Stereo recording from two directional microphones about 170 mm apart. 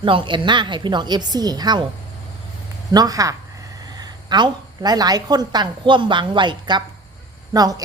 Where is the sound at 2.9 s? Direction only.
20° right (ahead or behind).